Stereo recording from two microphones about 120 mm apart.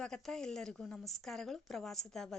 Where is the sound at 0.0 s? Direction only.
5° left (ahead or behind).